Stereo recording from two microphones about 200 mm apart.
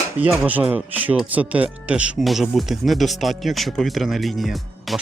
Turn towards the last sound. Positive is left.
turn(degrees=0)  # may be behind; listen again after turning